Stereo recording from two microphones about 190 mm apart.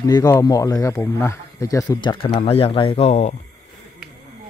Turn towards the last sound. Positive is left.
turn(degrees=35)  # may be behind; listen again after turning